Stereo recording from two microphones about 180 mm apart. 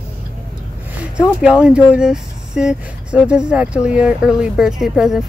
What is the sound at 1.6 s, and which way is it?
Speech, 5° right (ahead or behind).